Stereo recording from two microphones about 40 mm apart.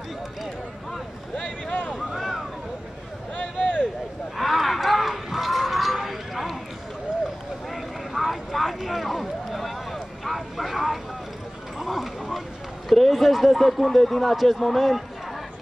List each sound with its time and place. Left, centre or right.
1.3 s a sound: left
2.1 s vehicle: centre
4.4 s a sound: centre
7.7 s vehicle: centre
11.8 s clip-clop: centre
12.9 s a man's voice: centre